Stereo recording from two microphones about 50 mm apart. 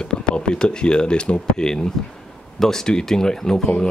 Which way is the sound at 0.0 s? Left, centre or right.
Centre.